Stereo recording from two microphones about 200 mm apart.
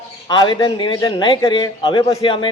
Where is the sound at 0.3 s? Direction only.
20° left (ahead or behind).